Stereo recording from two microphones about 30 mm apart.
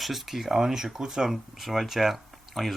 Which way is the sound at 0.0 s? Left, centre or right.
Centre.